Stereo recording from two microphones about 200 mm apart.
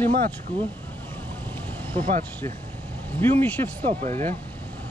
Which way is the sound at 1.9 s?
30° right (ahead or behind).